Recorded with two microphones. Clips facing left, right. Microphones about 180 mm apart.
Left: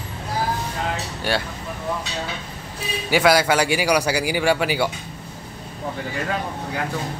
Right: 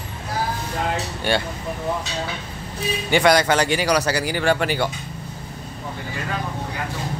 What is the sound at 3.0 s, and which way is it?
A man's voice, 5° left (ahead or behind).